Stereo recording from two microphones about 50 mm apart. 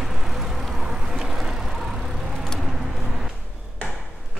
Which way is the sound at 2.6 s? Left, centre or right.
Centre.